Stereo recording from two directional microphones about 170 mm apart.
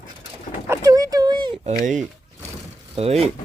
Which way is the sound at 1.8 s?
50° right (ahead or behind).